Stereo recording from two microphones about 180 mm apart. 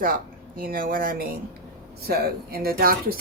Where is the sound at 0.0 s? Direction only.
55° right (ahead or behind).